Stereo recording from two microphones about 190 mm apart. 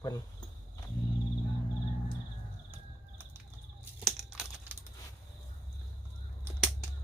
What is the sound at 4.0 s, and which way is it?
Crumpling, centre (ahead or behind).